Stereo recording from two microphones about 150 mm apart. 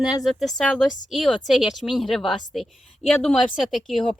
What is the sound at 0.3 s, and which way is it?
A woman's voice, centre (ahead or behind).